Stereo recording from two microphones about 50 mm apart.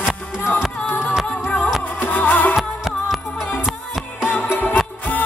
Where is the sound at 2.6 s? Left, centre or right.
Centre.